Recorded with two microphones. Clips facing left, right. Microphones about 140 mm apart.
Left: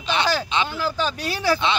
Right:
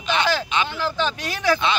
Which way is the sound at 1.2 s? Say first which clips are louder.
Left 1 dB; 35° left (ahead or behind).